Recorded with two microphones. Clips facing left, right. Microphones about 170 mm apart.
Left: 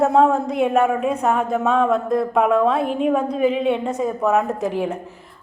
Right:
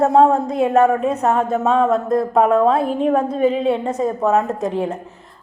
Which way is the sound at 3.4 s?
30° right (ahead or behind).